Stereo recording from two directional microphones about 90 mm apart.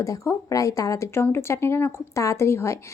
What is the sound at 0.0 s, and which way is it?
A woman's voice, 40° left (ahead or behind).